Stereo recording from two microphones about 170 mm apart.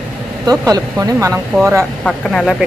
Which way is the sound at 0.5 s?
20° right (ahead or behind).